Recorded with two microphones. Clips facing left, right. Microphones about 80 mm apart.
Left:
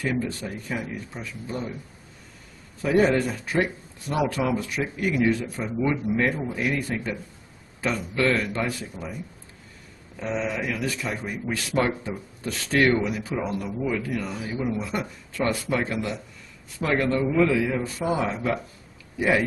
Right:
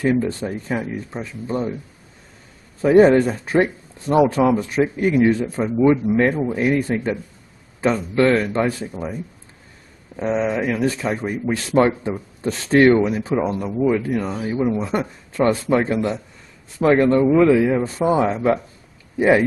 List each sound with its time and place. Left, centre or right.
0.0 s speech: right
2.8 s speech: right